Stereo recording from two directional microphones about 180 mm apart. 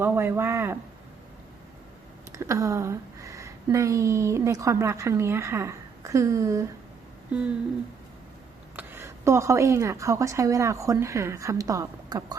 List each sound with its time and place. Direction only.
0.0 s speech: 10° right (ahead or behind)
2.3 s speech: 15° right (ahead or behind)
7.3 s humming: 5° right (ahead or behind)
8.7 s speech: 10° right (ahead or behind)